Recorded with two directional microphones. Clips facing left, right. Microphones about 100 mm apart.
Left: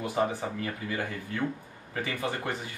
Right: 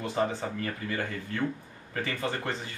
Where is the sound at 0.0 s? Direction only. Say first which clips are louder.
Left 1 dB; 15° left (ahead or behind).